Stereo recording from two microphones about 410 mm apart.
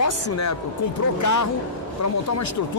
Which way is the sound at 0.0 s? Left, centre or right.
Left.